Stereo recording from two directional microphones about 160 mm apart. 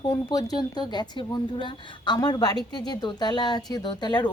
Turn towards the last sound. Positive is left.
turn(degrees=25)  # may be behind; listen again after turning